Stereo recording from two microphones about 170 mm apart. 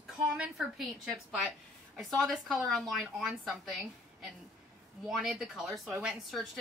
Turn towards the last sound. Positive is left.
turn(degrees=0)  # may be behind; listen again after turning